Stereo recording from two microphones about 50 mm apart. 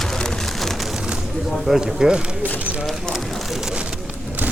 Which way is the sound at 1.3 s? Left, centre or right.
Centre.